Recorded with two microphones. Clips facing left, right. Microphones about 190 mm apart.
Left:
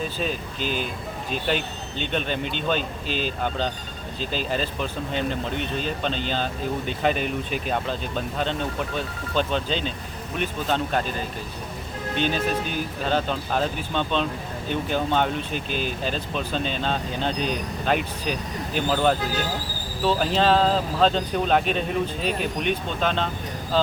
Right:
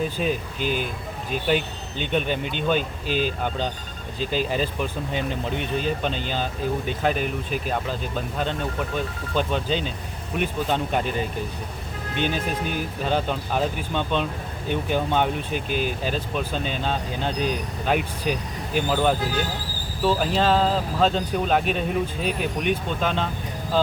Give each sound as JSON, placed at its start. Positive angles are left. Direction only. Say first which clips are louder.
{"t": 0.2, "sound": "speech", "louder": "right 3 dB", "side_deg": -15}
{"t": 3.1, "sound": "speech", "louder": "right 4 dB", "side_deg": -50}
{"t": 4.3, "sound": "speech", "louder": "right 2 dB", "side_deg": -10}
{"t": 12.1, "sound": "speech", "louder": "left 1 dB", "side_deg": -15}